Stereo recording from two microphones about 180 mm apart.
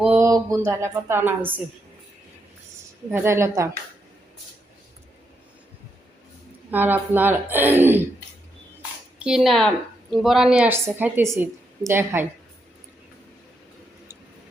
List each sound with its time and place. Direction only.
0.0 s a sound: 5° right (ahead or behind)
0.3 s a woman's voice: 20° right (ahead or behind)
3.1 s a woman's voice: 15° right (ahead or behind)
6.7 s a woman's voice: 10° right (ahead or behind)
9.1 s a woman's voice: 5° right (ahead or behind)